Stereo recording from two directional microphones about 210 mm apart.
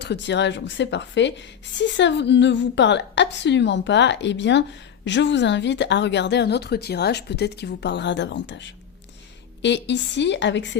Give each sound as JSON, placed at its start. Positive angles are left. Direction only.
{"t": 0.0, "sound": "a woman's voice", "side_deg": 55}